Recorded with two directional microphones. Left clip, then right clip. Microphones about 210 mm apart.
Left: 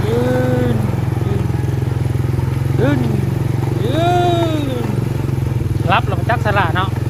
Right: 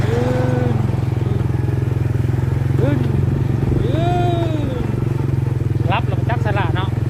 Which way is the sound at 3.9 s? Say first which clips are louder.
Left 7 dB; 20° left (ahead or behind).